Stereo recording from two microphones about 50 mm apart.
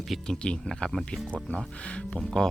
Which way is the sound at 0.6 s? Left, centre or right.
Centre.